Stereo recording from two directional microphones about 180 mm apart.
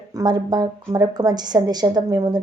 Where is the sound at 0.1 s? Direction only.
20° right (ahead or behind).